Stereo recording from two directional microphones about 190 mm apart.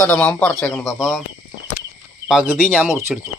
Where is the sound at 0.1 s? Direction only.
5° left (ahead or behind).